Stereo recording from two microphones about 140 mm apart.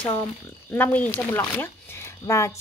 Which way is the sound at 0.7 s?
10° left (ahead or behind).